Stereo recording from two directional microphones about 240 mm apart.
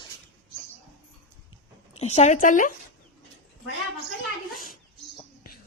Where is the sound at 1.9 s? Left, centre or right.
Left.